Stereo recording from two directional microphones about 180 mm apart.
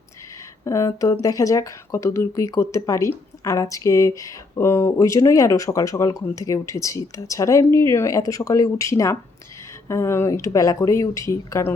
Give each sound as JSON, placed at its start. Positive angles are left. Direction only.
{"t": 0.6, "sound": "speech", "side_deg": 15}